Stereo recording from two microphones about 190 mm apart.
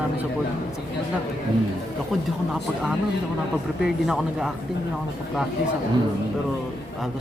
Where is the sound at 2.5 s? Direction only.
Centre (ahead or behind).